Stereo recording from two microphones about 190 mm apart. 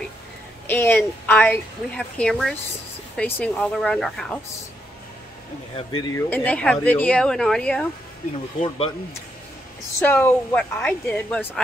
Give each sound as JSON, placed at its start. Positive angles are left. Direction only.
{"t": 0.7, "sound": "a woman's voice", "side_deg": 10}
{"t": 5.8, "sound": "speech", "side_deg": 25}
{"t": 6.1, "sound": "speech", "side_deg": 10}
{"t": 8.3, "sound": "speech", "side_deg": 30}
{"t": 10.0, "sound": "a woman's voice", "side_deg": 10}